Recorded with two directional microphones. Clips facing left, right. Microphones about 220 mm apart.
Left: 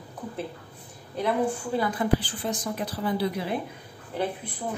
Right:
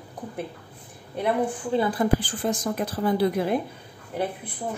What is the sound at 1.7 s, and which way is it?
Speech, 25° right (ahead or behind).